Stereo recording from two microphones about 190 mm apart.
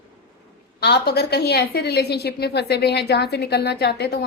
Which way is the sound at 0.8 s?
60° left (ahead or behind).